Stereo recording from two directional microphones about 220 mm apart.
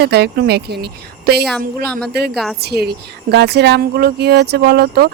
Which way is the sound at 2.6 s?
45° right (ahead or behind).